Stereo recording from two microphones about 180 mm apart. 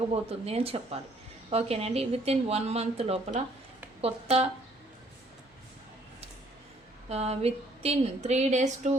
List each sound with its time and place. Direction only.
0.1 s speech: 35° right (ahead or behind)
7.1 s speech: 35° right (ahead or behind)